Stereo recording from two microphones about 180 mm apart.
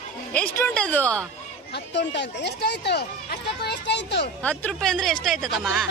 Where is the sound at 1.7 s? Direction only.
75° left (ahead or behind).